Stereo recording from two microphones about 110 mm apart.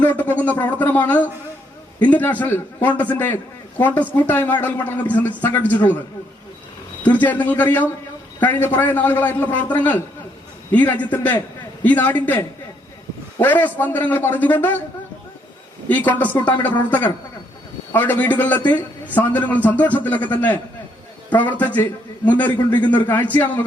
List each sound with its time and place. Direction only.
0.0 s a man's voice: 15° left (ahead or behind)
7.0 s a man's voice: 15° left (ahead or behind)
15.9 s a man's voice: 15° left (ahead or behind)
17.9 s a man's voice: 15° left (ahead or behind)